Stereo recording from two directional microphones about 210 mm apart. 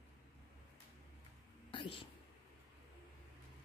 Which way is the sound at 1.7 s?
25° left (ahead or behind).